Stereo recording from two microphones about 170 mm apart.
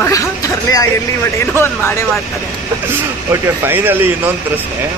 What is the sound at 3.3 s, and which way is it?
Speech, 15° right (ahead or behind).